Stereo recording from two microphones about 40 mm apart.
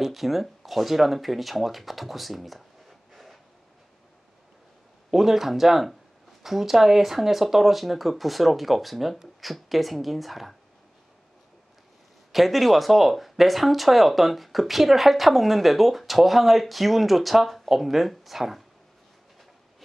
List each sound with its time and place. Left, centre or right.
0.0 s speech: centre
5.1 s speech: centre
12.3 s speech: centre